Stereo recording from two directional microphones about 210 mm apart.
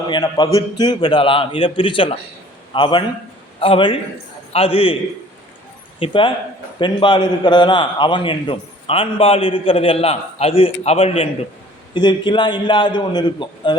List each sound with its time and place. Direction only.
0.1 s a man's voice: 20° left (ahead or behind)
6.0 s a man's voice: 25° left (ahead or behind)